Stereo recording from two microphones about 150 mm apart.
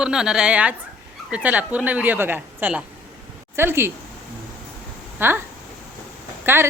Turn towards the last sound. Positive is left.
turn(degrees=-15)  # may be behind; listen again after turning